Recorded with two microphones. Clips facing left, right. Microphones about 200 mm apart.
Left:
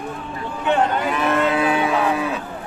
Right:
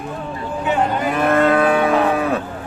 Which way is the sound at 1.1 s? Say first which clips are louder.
Right 4 dB; 50° right (ahead or behind).